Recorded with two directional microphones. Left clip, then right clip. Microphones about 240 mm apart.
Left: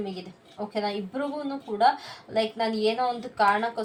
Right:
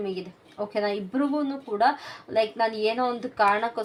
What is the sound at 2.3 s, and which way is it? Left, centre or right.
A woman's voice, right.